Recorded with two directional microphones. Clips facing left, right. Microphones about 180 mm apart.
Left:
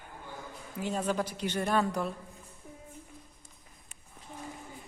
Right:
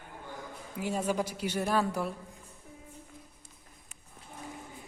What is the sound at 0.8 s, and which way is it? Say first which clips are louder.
A woman's voice: even; 10° right (ahead or behind).